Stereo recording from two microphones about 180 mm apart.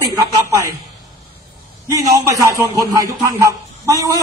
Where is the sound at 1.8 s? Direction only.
20° right (ahead or behind).